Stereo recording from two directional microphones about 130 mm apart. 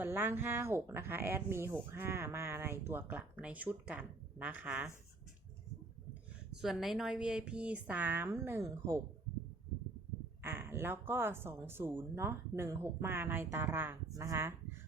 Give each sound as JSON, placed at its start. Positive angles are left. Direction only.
{"t": 0.0, "sound": "speech", "side_deg": -15}
{"t": 6.6, "sound": "speech", "side_deg": 0}
{"t": 10.4, "sound": "speech", "side_deg": -15}